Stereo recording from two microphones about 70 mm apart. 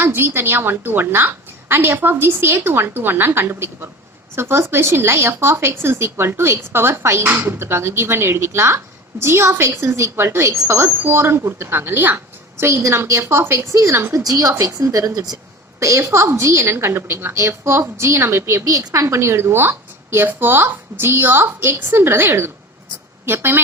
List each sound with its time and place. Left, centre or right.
0.0 s speech: right
13.4 s speech: right
14.3 s a woman's voice: right
15.8 s speech: right
18.6 s speech: right